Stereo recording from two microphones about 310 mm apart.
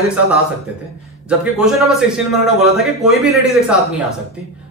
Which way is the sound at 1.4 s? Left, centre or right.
Centre.